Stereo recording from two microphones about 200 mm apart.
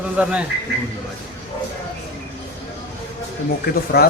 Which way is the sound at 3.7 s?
50° left (ahead or behind).